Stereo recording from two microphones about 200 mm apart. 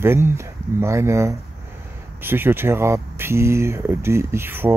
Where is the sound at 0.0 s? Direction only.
10° right (ahead or behind).